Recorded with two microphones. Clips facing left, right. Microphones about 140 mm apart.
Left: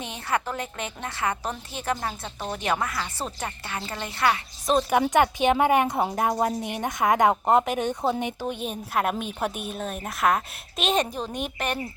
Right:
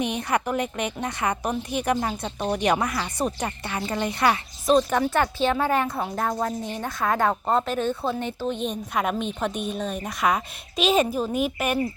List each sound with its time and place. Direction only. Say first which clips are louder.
0.0 s a woman's voice: right 4 dB; 15° right (ahead or behind)
4.6 s a woman's voice: right 2 dB; 5° left (ahead or behind)